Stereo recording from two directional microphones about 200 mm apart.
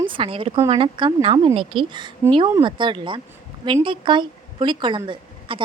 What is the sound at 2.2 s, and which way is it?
Speech, 10° right (ahead or behind).